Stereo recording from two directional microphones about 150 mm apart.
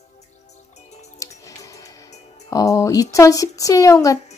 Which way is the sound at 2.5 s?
20° left (ahead or behind).